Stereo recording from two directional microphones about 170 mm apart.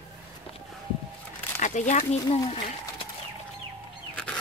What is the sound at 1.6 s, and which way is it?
Speech, 45° left (ahead or behind).